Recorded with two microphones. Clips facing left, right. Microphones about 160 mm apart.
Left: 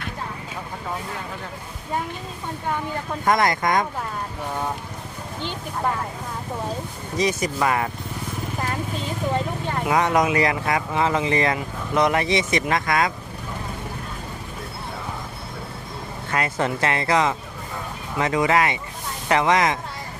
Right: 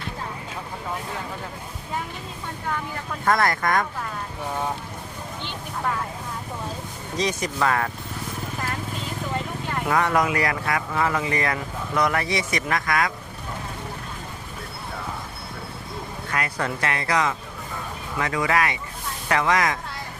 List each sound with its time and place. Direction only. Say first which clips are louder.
3.2 s speech: left 1 dB; 15° left (ahead or behind)
7.2 s speech: left 2 dB; 10° left (ahead or behind)
9.9 s speech: left 2 dB; 20° left (ahead or behind)
16.3 s speech: left 4 dB; 25° left (ahead or behind)